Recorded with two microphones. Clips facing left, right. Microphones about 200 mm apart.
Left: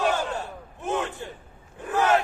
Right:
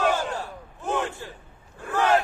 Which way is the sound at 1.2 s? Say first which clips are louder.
Left 2 dB; 20° left (ahead or behind).